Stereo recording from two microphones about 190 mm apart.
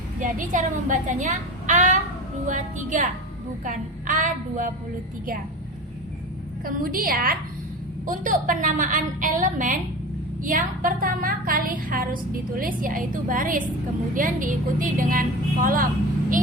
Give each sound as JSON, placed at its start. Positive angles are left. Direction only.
{"t": 0.2, "sound": "a woman's voice", "side_deg": -45}
{"t": 6.7, "sound": "a woman's voice", "side_deg": -50}